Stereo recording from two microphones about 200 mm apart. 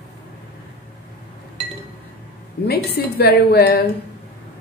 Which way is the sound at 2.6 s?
55° left (ahead or behind).